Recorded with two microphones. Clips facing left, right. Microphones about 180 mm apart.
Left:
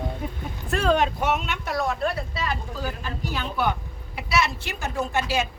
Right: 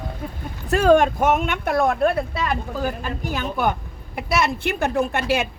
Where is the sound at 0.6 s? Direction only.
45° right (ahead or behind).